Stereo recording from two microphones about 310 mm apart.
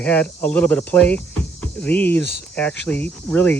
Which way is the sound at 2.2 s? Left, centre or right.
Left.